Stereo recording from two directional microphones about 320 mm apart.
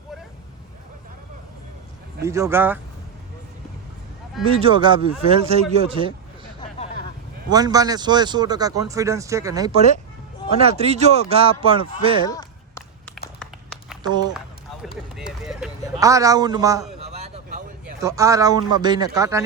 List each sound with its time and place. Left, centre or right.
2.2 s speech: centre
4.5 s speech: centre
7.5 s speech: centre
12.3 s a sound: centre
13.4 s a sound: centre
14.1 s speech: centre
14.3 s run: centre
18.0 s speech: centre